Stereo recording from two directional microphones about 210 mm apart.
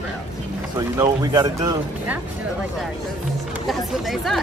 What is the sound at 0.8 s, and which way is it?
Speech, 20° right (ahead or behind).